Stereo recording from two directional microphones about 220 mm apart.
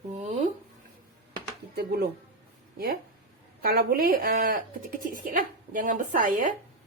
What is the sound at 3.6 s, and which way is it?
Speech, 45° right (ahead or behind).